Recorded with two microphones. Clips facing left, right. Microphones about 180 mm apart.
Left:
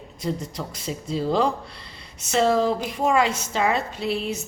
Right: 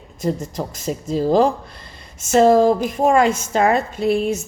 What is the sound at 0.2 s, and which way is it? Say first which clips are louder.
A woman's voice: right 6 dB; 45° right (ahead or behind).